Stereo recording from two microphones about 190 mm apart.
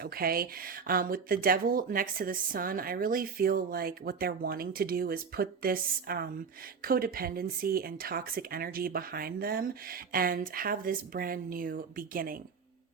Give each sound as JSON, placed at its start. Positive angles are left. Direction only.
{"t": 0.0, "sound": "speech", "side_deg": -50}